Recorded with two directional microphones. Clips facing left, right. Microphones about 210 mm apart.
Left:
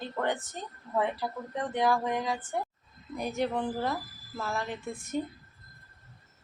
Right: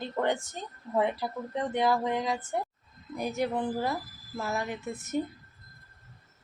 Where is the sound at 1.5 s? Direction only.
20° right (ahead or behind).